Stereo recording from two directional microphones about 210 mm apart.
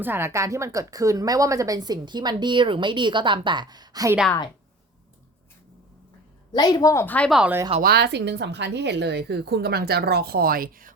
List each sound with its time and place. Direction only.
0.0 s speech: 10° right (ahead or behind)
6.5 s a woman's voice: 20° left (ahead or behind); by 7.6 s 5° right (ahead or behind)
7.8 s speech: 50° right (ahead or behind)